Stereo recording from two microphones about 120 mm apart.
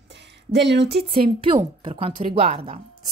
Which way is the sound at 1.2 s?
45° right (ahead or behind).